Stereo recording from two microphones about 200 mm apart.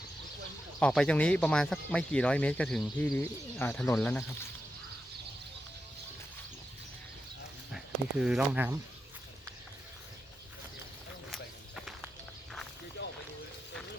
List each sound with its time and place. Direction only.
0.8 s speech: 5° left (ahead or behind)
8.2 s speech: 5° right (ahead or behind)
11.3 s walk: centre (ahead or behind)
13.0 s a sound: 65° left (ahead or behind)